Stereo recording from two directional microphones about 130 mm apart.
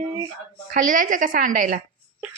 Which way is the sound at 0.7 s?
90° right.